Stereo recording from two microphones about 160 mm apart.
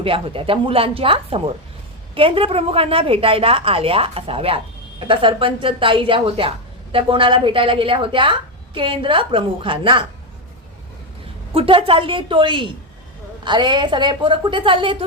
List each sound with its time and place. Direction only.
0.0 s a woman's voice: 35° right (ahead or behind)
11.5 s a woman's voice: 35° right (ahead or behind)